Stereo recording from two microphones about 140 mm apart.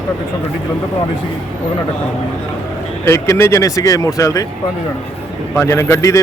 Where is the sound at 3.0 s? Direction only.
20° left (ahead or behind).